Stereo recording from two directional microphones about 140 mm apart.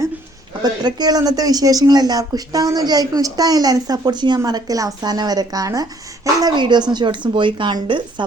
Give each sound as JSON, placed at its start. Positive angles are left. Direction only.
{"t": 0.6, "sound": "speech", "side_deg": -30}